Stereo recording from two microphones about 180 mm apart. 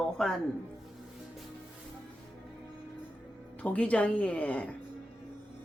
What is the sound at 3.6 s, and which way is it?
A woman's voice, 5° left (ahead or behind).